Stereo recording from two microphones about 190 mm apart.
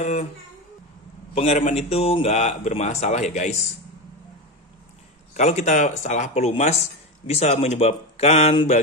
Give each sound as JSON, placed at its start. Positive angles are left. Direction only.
{"t": 0.0, "sound": "speech", "side_deg": 35}
{"t": 1.3, "sound": "speech", "side_deg": 35}
{"t": 5.3, "sound": "speech", "side_deg": 35}